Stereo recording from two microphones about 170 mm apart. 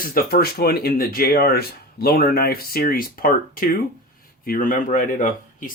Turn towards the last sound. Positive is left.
turn(degrees=50)  # may be behind; listen again after turning